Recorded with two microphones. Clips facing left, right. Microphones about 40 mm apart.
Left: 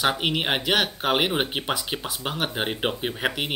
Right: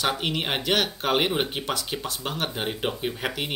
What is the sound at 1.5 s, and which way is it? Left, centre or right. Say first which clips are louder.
Speech: left 2 dB; left.